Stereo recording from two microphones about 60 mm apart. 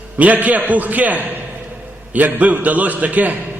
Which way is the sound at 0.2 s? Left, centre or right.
Right.